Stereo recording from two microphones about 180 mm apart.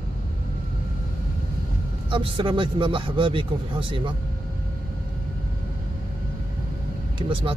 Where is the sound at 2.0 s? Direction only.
30° right (ahead or behind).